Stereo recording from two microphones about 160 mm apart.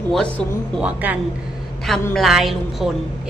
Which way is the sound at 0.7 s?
10° right (ahead or behind).